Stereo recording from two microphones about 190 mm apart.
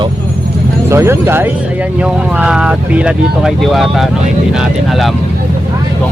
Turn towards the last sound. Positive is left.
turn(degrees=0)  # may be behind; listen again after turning